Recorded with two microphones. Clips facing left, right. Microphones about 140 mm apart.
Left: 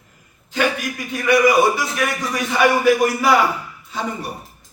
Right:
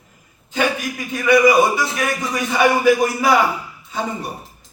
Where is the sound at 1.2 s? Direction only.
20° right (ahead or behind).